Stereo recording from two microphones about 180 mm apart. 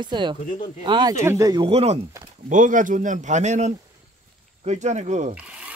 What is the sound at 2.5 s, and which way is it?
A man's voice, 45° right (ahead or behind).